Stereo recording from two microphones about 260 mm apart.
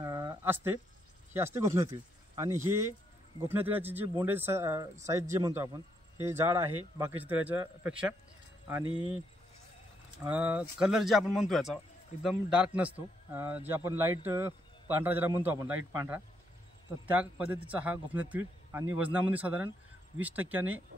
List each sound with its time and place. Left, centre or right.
0.0 s a sound: centre
1.3 s a man's voice: centre
8.8 s speech: centre
10.2 s a man's voice: centre